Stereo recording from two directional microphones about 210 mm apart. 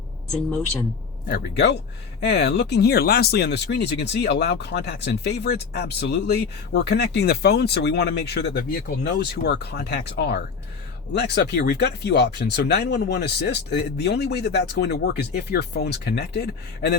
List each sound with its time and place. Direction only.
1.3 s speech: 50° left (ahead or behind)